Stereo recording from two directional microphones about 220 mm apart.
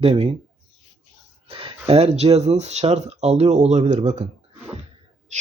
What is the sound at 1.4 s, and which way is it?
Speech, 25° right (ahead or behind).